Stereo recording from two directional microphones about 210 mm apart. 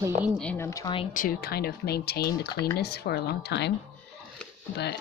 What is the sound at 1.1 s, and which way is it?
Speech, 40° left (ahead or behind).